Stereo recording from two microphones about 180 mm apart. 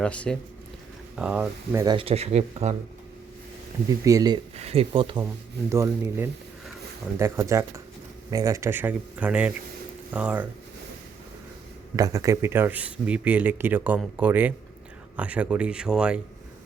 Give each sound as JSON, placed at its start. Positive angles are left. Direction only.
{"t": 0.0, "sound": "speech", "side_deg": 5}
{"t": 1.1, "sound": "speech", "side_deg": -5}
{"t": 1.8, "sound": "speech", "side_deg": -25}
{"t": 3.8, "sound": "speech", "side_deg": -20}
{"t": 4.5, "sound": "speech", "side_deg": -35}
{"t": 5.6, "sound": "speech", "side_deg": -15}
{"t": 11.9, "sound": "speech", "side_deg": -20}